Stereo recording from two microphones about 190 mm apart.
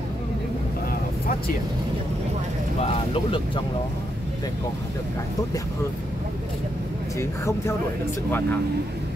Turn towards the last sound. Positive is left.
turn(degrees=15)  # may be behind; listen again after turning